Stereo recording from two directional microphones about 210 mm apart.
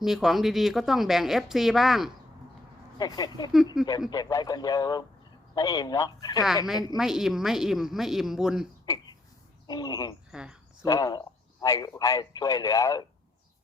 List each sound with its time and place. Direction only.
0.0 s a woman's voice: centre (ahead or behind)
3.0 s a man's voice: 20° left (ahead or behind)
3.8 s a woman's voice: centre (ahead or behind)
4.1 s a man's voice: 20° left (ahead or behind)
6.9 s a woman's voice: centre (ahead or behind)
9.6 s a man's voice: 20° left (ahead or behind)
10.3 s speech: 5° right (ahead or behind)
10.8 s a man's voice: 15° left (ahead or behind)